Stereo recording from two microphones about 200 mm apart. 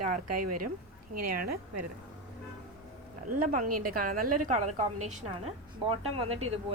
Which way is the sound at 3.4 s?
45° right (ahead or behind).